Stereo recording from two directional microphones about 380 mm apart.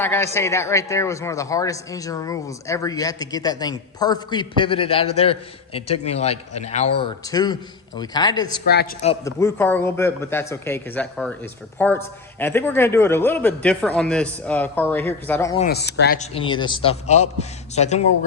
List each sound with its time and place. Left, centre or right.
0.0 s a man's voice: centre
8.6 s a man's voice: left; by 15.6 s centre
15.6 s speech: left